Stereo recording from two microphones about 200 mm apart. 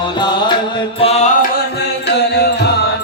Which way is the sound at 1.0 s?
30° left (ahead or behind).